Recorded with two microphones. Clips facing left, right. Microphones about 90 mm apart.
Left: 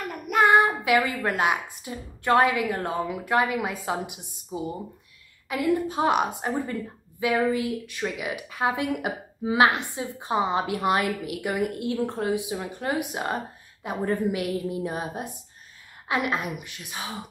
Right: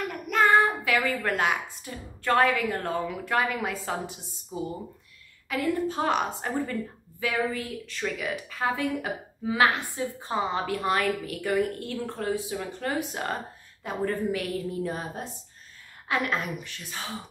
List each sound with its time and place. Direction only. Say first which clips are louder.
0.0 s child singing: left 1 dB; centre (ahead or behind)
0.4 s a woman's voice: left 2 dB; 15° left (ahead or behind)